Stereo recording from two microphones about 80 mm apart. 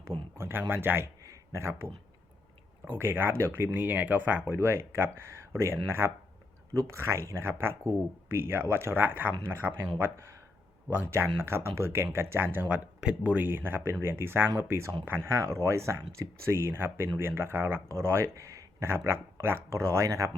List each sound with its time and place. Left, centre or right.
0.3 s speech: right
1.2 s a sound: right
2.8 s speech: right
4.5 s speech: right
12.6 s speech: centre; by 20.3 s right